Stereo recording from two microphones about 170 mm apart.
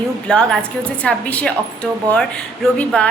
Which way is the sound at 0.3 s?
5° left (ahead or behind).